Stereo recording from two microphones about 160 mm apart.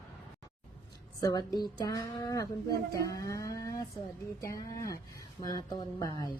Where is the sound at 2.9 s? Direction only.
20° left (ahead or behind).